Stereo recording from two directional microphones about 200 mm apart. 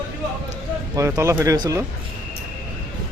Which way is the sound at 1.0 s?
15° right (ahead or behind).